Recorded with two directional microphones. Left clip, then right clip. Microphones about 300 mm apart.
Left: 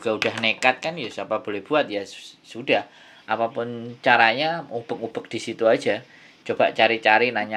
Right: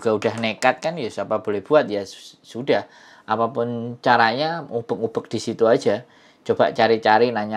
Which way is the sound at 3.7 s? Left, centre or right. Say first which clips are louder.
Even; right.